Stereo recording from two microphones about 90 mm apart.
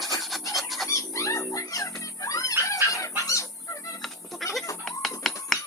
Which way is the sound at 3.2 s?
35° left (ahead or behind).